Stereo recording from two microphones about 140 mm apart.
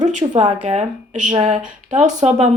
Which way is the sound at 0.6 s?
60° right (ahead or behind).